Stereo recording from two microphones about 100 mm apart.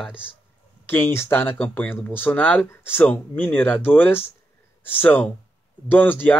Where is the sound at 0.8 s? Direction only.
20° left (ahead or behind).